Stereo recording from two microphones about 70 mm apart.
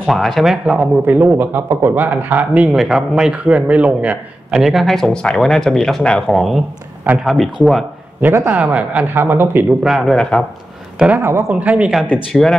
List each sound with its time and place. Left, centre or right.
0.0 s speech: centre
0.7 s speech: right
1.7 s speech: right
2.0 s speech: right
2.7 s a man's voice: centre
4.6 s speech: centre
6.3 s speech: centre
8.5 s speech: centre
9.8 s speech: centre
11.1 s speech: right
11.6 s speech: right
12.3 s speech: centre